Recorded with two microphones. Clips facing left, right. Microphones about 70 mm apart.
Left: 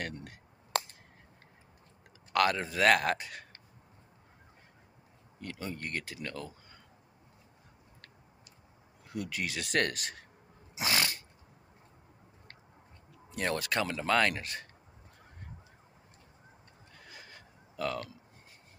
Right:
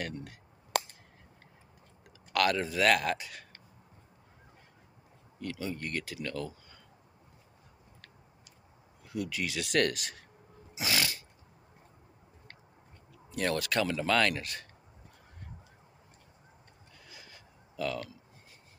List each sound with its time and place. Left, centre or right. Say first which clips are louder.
0.0 s speech: right 1 dB; left
2.3 s speech: even; left
5.4 s speech: right 3 dB; left
9.0 s speech: right 2 dB; left
10.7 s a sound: left 1 dB; left
13.4 s speech: right 2 dB; left
16.9 s a sound: left 2 dB; left